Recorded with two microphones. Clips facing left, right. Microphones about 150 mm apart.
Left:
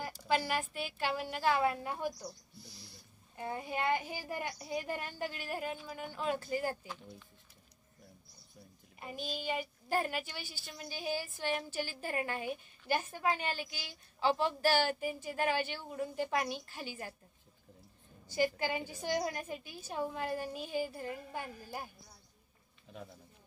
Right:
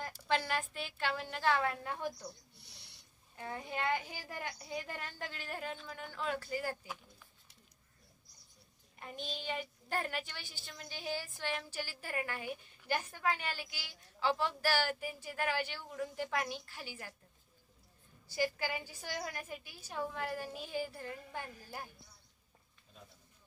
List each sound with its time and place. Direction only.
0.0 s a child's voice: 10° left (ahead or behind)
2.5 s a sound: 70° right (ahead or behind)
3.3 s a child's voice: 20° left (ahead or behind)
9.0 s a child's voice: 10° left (ahead or behind)
18.3 s a woman's voice: 20° left (ahead or behind)
22.9 s a sound: 85° left